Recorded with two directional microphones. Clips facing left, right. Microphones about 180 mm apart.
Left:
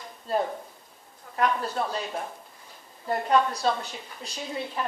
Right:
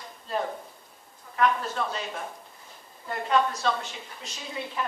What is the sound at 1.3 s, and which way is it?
Speech, 40° left (ahead or behind).